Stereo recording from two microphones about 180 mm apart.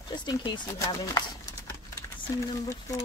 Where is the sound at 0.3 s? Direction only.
20° left (ahead or behind).